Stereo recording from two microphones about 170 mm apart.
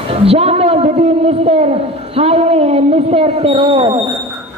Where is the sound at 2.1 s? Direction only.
35° right (ahead or behind).